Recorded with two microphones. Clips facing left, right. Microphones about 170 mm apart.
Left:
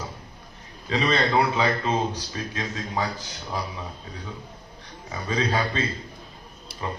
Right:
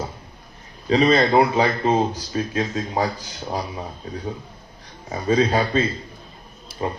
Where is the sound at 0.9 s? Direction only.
35° right (ahead or behind).